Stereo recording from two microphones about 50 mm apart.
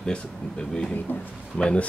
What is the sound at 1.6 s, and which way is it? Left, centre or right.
Speech, centre.